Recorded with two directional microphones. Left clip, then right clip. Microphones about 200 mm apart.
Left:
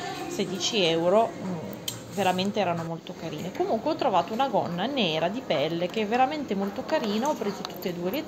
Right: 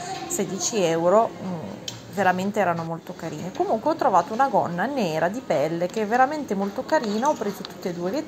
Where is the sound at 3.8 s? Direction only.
15° right (ahead or behind).